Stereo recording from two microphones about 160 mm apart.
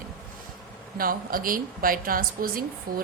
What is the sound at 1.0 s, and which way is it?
A woman's voice, 60° right (ahead or behind).